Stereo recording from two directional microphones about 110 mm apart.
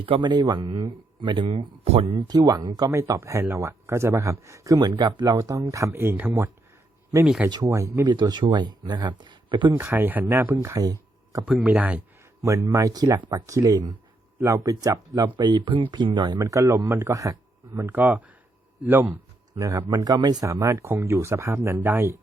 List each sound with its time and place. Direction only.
0.0 s speech: 50° right (ahead or behind)
2.2 s speech: 35° right (ahead or behind)
2.9 s speech: 30° right (ahead or behind)
4.9 s speech: 40° right (ahead or behind); by 8.0 s 25° right (ahead or behind)
8.0 s speech: 40° right (ahead or behind)
9.7 s speech: 15° right (ahead or behind)
11.6 s speech: 10° right (ahead or behind)
12.4 s speech: 30° right (ahead or behind)
15.2 s speech: 40° right (ahead or behind)
16.4 s speech: 25° right (ahead or behind)
17.7 s speech: 15° right (ahead or behind)